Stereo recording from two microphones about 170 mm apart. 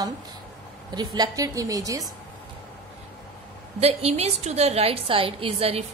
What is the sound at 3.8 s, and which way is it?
A woman's voice, 35° right (ahead or behind).